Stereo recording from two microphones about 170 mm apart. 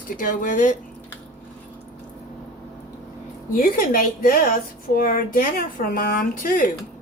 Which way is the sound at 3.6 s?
55° left (ahead or behind).